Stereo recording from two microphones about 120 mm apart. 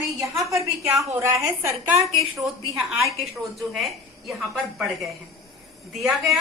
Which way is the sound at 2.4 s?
Centre (ahead or behind).